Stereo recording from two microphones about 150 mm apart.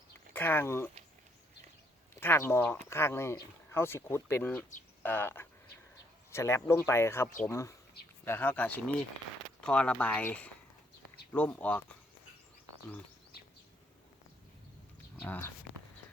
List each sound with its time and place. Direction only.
0.3 s speech: 15° left (ahead or behind)
2.2 s speech: 15° left (ahead or behind)
15.2 s speech: 15° left (ahead or behind)